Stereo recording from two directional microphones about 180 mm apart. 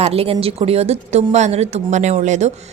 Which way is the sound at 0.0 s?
35° right (ahead or behind).